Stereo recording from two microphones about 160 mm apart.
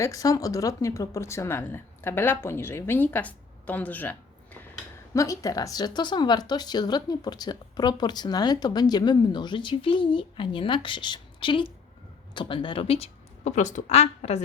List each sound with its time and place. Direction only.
0.0 s speech: 20° left (ahead or behind); by 14.4 s 40° left (ahead or behind)